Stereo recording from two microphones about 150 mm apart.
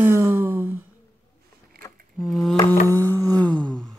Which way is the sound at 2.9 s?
15° left (ahead or behind).